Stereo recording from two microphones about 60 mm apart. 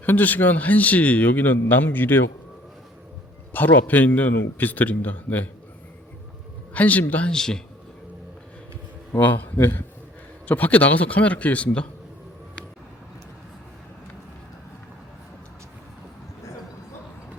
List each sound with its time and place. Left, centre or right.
0.0 s a man's voice: left
3.5 s a man's voice: left
6.7 s a man's voice: left
7.3 s speech: centre
9.2 s a man's voice: left